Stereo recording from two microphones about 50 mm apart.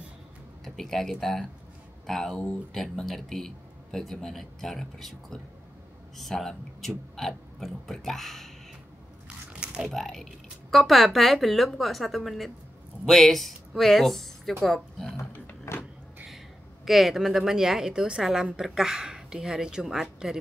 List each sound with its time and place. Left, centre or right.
0.7 s a man's voice: centre
6.1 s speech: centre
9.5 s a sound: centre
9.9 s a man's voice: centre
15.7 s power windows: left
16.8 s a woman's voice: centre